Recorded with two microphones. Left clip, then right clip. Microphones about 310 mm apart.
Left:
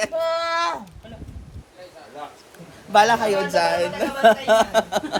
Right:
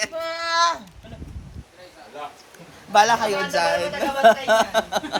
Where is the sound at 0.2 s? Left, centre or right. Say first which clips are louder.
Left 2 dB; left.